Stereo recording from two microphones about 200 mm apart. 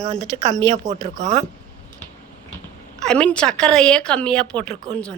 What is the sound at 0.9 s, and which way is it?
Speech, 35° right (ahead or behind).